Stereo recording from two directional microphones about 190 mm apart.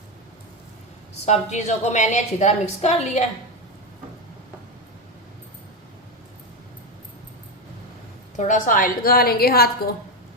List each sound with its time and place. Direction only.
1.2 s a woman's voice: 35° left (ahead or behind)
8.4 s a woman's voice: 40° left (ahead or behind)